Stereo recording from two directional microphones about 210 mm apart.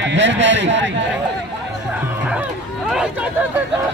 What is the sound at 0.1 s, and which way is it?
Speech, 60° right (ahead or behind).